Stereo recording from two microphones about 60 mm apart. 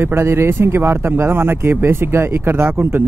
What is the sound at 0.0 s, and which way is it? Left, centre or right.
Speech, right.